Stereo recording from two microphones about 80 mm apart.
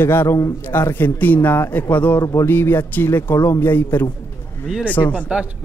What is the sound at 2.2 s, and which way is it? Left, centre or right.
A man's voice, left.